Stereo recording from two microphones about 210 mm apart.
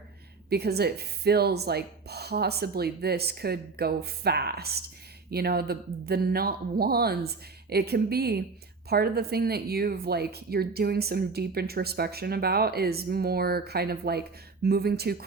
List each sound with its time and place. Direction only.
0.5 s speech: 50° right (ahead or behind)